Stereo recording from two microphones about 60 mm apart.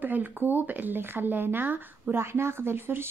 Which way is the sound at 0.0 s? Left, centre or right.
Right.